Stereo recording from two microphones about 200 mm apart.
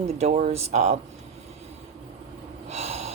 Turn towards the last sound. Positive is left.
turn(degrees=-30)  # may be behind; listen again after turning